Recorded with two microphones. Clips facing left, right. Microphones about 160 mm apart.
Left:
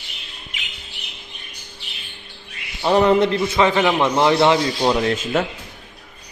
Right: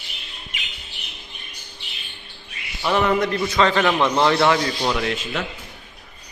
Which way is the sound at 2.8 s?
30° left (ahead or behind).